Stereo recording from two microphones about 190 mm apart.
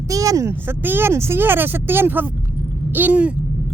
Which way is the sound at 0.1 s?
15° right (ahead or behind).